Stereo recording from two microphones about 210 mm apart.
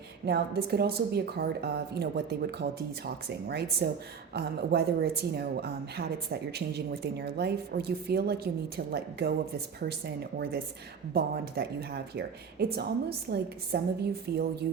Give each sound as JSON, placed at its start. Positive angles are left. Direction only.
{"t": 0.3, "sound": "speech", "side_deg": -50}
{"t": 11.1, "sound": "speech", "side_deg": -50}